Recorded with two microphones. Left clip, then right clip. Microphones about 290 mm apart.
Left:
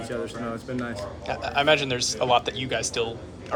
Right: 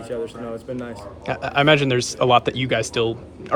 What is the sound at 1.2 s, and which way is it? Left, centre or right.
Speech, right.